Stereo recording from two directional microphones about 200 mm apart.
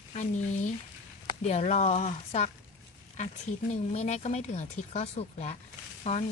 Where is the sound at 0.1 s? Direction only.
35° left (ahead or behind).